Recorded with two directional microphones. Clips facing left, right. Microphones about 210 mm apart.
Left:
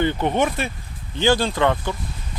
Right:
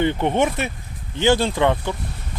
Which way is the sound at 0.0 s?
20° right (ahead or behind).